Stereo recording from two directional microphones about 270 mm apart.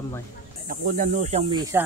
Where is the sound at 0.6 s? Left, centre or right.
Right; by 1.8 s centre.